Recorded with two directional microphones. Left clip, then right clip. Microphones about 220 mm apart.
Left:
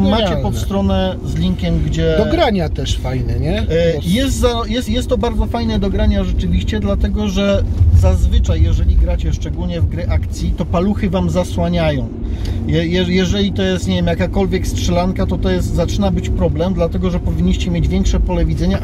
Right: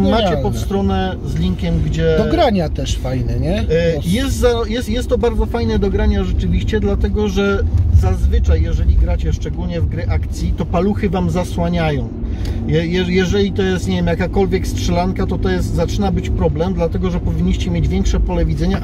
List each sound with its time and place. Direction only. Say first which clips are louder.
0.7 s speech: left 4 dB; 15° left (ahead or behind)
2.2 s speech: even; 15° right (ahead or behind)
3.7 s speech: left 1 dB; 15° left (ahead or behind)
10.4 s speech: even; 15° left (ahead or behind)